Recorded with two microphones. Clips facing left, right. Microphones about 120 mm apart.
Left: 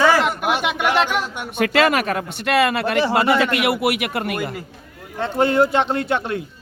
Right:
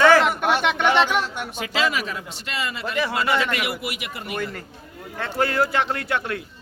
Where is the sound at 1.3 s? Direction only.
15° left (ahead or behind).